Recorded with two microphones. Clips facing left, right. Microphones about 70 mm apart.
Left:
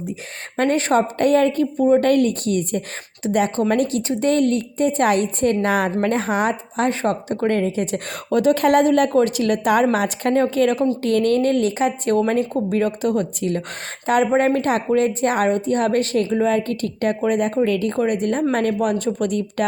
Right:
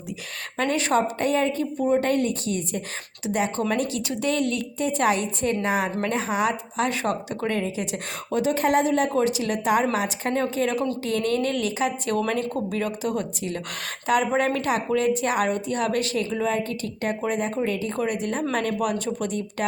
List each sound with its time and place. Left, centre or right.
0.5 s speech: left
1.2 s a woman's voice: left
3.2 s a woman's voice: left